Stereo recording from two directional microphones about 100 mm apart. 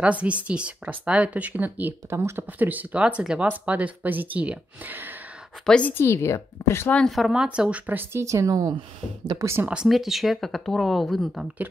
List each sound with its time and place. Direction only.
0.0 s speech: 10° right (ahead or behind)
5.7 s a woman's voice: 10° left (ahead or behind)
5.9 s speech: 25° left (ahead or behind)
7.1 s speech: centre (ahead or behind); by 9.7 s 25° right (ahead or behind)
9.7 s speech: 5° right (ahead or behind)